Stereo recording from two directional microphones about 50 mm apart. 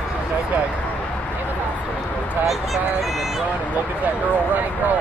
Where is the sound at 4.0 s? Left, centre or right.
Right.